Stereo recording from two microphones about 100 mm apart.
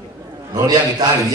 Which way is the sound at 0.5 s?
40° right (ahead or behind).